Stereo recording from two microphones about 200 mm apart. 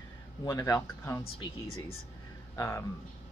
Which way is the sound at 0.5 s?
15° left (ahead or behind).